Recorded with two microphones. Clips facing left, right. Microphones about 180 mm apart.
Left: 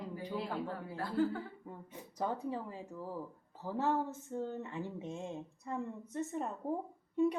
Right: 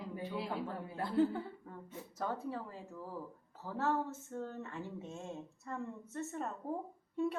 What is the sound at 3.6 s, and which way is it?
Speech, 15° left (ahead or behind).